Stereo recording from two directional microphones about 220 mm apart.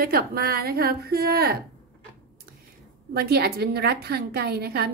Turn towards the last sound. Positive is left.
turn(degrees=-45)  # may be behind; listen again after turning